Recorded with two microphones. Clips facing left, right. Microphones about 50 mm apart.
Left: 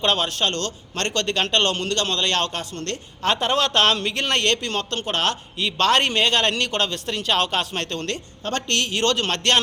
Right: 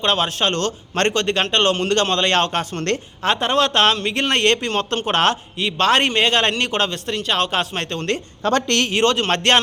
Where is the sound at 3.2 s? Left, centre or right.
Centre; by 5.4 s right.